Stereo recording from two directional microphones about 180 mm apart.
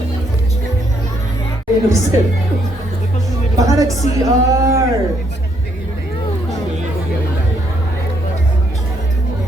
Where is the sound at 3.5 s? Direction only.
20° right (ahead or behind).